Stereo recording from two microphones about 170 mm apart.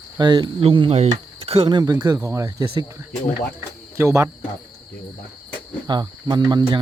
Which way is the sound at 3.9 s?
15° right (ahead or behind).